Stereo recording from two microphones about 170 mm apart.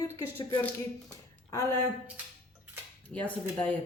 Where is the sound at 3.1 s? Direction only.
5° left (ahead or behind).